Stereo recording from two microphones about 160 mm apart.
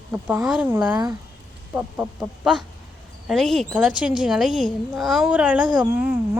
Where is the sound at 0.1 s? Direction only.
10° right (ahead or behind).